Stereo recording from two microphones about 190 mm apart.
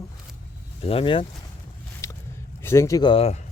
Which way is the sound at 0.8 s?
30° left (ahead or behind).